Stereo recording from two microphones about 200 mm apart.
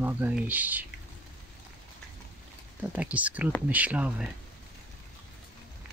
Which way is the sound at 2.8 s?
10° right (ahead or behind).